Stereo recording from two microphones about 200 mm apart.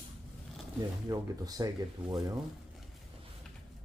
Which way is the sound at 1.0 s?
20° right (ahead or behind).